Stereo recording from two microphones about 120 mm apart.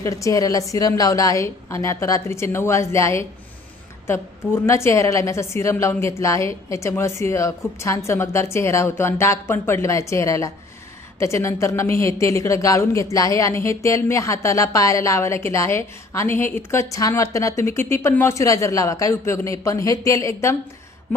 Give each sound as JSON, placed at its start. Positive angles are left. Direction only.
{"t": 0.0, "sound": "a woman's voice", "side_deg": 25}